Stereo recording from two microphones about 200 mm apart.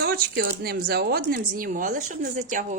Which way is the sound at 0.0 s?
50° right (ahead or behind).